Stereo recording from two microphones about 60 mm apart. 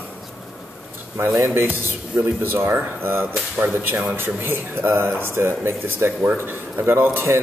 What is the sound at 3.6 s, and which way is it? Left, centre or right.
Speech, right.